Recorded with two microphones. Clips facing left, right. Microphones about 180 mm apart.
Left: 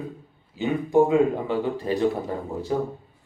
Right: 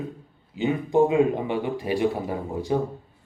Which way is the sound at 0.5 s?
20° right (ahead or behind).